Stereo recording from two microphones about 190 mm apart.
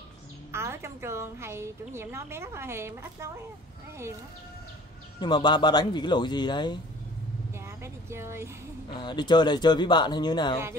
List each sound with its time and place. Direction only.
0.5 s a woman's voice: 15° right (ahead or behind)
5.2 s speech: 20° left (ahead or behind)
7.6 s a sound: 15° right (ahead or behind)
8.9 s speech: 25° left (ahead or behind)